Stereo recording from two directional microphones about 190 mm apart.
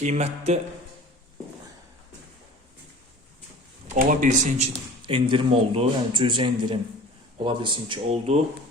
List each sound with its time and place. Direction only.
0.0 s speech: 35° right (ahead or behind)
3.9 s speech: 45° right (ahead or behind)